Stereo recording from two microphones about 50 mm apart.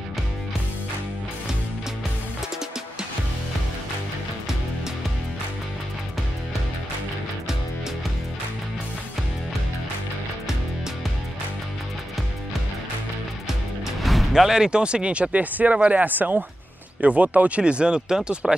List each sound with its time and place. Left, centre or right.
13.5 s speech: centre